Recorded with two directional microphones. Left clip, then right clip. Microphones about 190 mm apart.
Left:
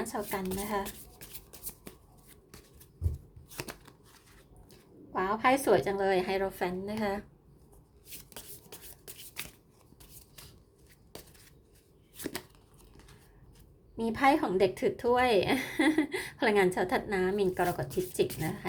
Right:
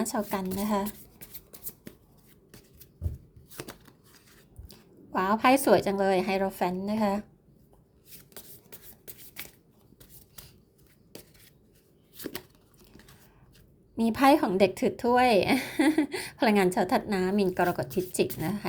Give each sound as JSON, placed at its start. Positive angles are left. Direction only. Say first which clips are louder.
{"t": 0.0, "sound": "a woman's voice", "louder": "right 4 dB", "side_deg": -30}
{"t": 3.5, "sound": "a sound", "louder": "left 1 dB", "side_deg": 5}
{"t": 4.7, "sound": "a woman's voice", "louder": "right 4 dB", "side_deg": -35}
{"t": 12.1, "sound": "chopping", "louder": "even", "side_deg": 0}
{"t": 13.9, "sound": "a woman's voice", "louder": "right 4 dB", "side_deg": -35}